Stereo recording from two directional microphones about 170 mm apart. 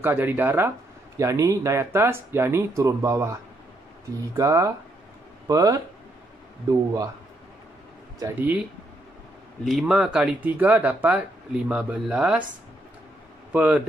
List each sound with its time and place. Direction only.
0.0 s speech: 10° right (ahead or behind)
4.4 s speech: 20° right (ahead or behind)
8.2 s speech: 10° right (ahead or behind)
9.7 s speech: centre (ahead or behind)
13.5 s speech: 10° right (ahead or behind)